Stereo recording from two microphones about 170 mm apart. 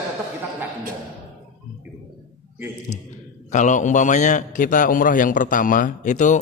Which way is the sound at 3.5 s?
45° left (ahead or behind).